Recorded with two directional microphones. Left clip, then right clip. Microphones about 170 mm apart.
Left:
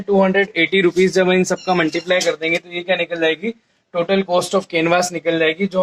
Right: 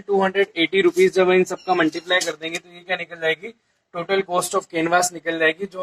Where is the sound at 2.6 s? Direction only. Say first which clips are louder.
Left 7 dB; 20° left (ahead or behind).